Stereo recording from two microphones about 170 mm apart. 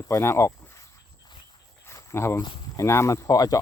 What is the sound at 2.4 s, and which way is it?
Speech, 25° left (ahead or behind).